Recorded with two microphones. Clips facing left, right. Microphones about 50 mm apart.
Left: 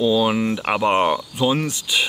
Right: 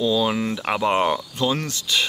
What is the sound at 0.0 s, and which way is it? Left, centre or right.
Speech, centre.